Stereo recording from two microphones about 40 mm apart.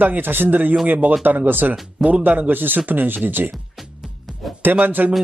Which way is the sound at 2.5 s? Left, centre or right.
Right.